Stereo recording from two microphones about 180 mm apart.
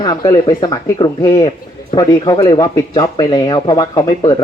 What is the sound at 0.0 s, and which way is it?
Speech, 20° left (ahead or behind).